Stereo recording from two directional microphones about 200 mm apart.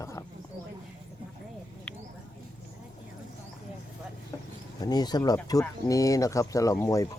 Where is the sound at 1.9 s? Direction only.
5° left (ahead or behind).